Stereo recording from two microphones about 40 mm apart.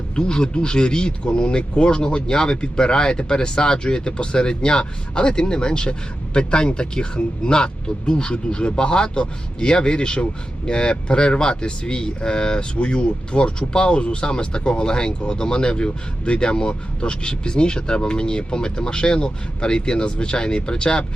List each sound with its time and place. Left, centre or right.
0.2 s speech: left